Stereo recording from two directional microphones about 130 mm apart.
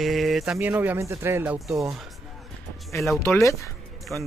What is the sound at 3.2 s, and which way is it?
Speech, 20° left (ahead or behind).